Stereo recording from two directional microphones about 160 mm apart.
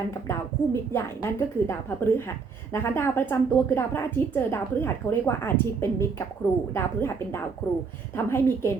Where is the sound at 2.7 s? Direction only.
15° left (ahead or behind).